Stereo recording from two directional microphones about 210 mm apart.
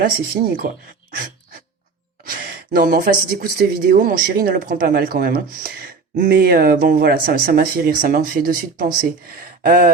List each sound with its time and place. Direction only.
0.0 s speech: 45° right (ahead or behind)
2.2 s speech: 45° right (ahead or behind)
9.6 s a sound: 40° right (ahead or behind)